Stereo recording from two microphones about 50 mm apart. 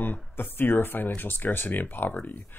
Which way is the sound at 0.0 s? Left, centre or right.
Left.